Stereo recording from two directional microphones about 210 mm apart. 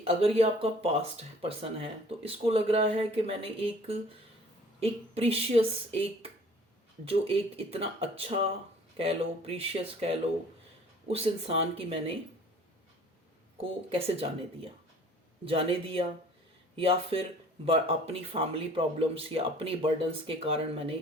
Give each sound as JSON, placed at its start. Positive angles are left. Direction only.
{"t": 0.0, "sound": "speech", "side_deg": -30}
{"t": 13.6, "sound": "speech", "side_deg": -25}